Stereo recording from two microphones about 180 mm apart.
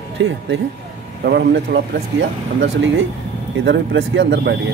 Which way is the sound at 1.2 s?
65° right (ahead or behind).